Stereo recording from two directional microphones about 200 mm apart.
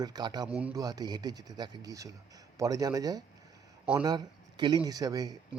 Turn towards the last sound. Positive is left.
turn(degrees=-20)  # may be behind; listen again after turning